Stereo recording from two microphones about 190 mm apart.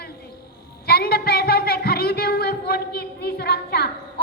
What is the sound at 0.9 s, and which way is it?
A woman's voice, 55° left (ahead or behind).